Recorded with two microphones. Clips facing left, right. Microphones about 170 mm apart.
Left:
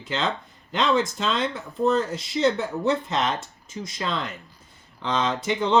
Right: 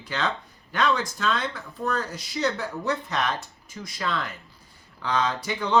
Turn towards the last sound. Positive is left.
turn(degrees=20)  # may be behind; listen again after turning